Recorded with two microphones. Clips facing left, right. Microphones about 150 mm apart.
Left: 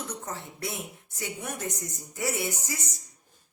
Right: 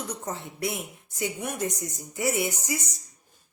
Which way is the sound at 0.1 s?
15° right (ahead or behind).